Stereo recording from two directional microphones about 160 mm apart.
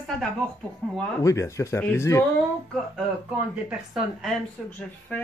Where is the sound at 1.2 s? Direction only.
20° left (ahead or behind).